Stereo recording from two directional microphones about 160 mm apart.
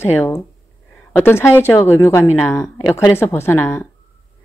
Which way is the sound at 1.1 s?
15° left (ahead or behind).